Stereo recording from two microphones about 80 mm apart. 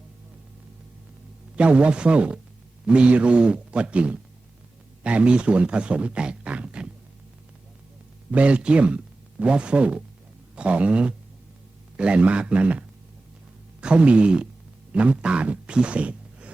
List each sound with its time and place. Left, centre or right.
1.5 s speech: centre
8.3 s speech: centre
13.8 s speech: centre